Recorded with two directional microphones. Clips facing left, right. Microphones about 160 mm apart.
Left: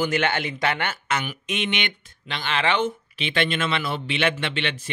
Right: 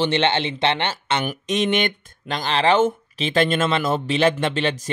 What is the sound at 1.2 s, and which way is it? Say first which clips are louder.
Speech: right 7 dB; 40° right (ahead or behind).